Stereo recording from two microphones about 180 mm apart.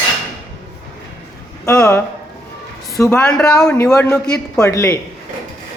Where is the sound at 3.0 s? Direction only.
15° left (ahead or behind).